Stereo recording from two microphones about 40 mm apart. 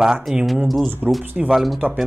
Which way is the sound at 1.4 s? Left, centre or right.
Centre.